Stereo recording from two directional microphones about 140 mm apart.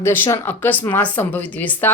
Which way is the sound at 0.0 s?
15° left (ahead or behind).